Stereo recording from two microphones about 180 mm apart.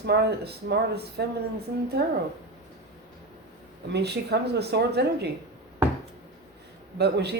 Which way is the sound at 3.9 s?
65° right (ahead or behind).